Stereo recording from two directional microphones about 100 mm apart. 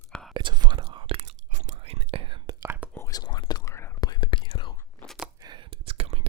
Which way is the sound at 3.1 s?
45° left (ahead or behind).